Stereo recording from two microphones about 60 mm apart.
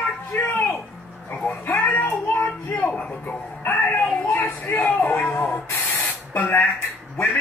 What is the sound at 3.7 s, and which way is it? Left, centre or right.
Music, left.